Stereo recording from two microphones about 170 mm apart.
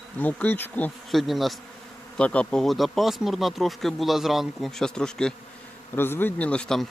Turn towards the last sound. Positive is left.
turn(degrees=5)  # may be behind; listen again after turning